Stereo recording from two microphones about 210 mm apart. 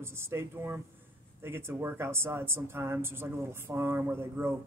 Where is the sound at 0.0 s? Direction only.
10° right (ahead or behind).